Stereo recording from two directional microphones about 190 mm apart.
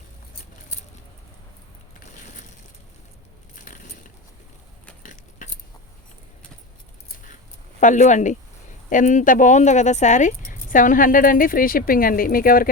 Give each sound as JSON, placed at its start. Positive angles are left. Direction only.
{"t": 5.4, "sound": "keys jangling", "side_deg": 45}
{"t": 7.8, "sound": "speech", "side_deg": 40}